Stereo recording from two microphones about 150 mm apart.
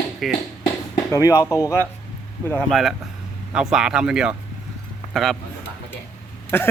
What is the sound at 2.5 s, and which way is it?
Speech, 5° left (ahead or behind).